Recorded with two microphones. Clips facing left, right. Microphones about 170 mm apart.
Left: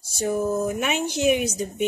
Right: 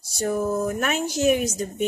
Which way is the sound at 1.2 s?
5° left (ahead or behind).